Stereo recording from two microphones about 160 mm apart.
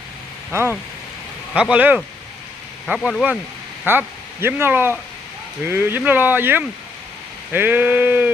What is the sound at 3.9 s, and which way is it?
Speech, 15° right (ahead or behind).